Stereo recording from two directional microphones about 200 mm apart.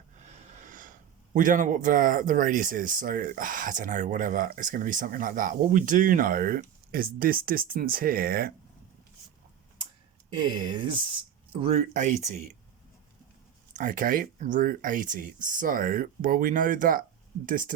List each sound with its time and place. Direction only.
0.3 s speech: 40° right (ahead or behind)
10.3 s speech: 25° right (ahead or behind)
13.7 s speech: 40° right (ahead or behind)